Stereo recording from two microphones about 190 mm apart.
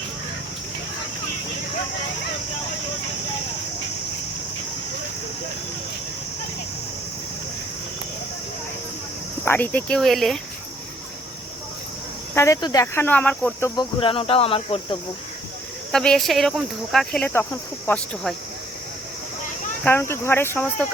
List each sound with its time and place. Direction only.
9.4 s speech: 10° left (ahead or behind)
12.3 s cricket: 15° left (ahead or behind)
13.7 s speech: 30° left (ahead or behind)
15.9 s speech: 5° left (ahead or behind)
19.8 s cricket: 10° left (ahead or behind)